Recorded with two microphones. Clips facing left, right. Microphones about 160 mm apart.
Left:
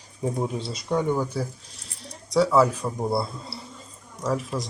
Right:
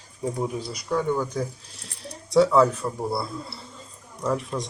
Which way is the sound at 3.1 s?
25° left (ahead or behind).